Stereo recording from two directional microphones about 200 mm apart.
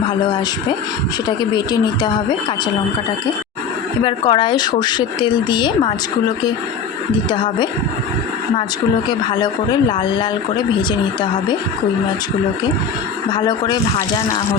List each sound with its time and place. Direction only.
1.4 s speech: 20° left (ahead or behind)
4.0 s speech: 25° left (ahead or behind)
7.3 s speech: 25° left (ahead or behind)
9.0 s speech: 20° left (ahead or behind)
13.3 s speech: 20° left (ahead or behind)